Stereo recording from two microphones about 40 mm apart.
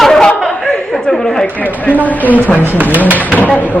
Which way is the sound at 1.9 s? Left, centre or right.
Left.